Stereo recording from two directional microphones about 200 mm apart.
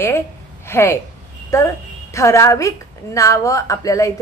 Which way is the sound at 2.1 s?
15° left (ahead or behind).